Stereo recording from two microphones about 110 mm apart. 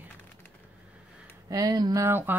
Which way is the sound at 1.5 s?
35° right (ahead or behind).